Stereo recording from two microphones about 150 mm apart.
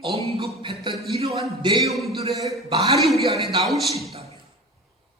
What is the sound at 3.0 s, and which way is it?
Speech, centre (ahead or behind).